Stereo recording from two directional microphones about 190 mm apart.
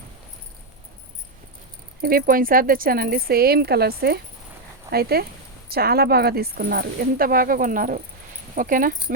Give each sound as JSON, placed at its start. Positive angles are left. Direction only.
{"t": 2.0, "sound": "speech", "side_deg": -50}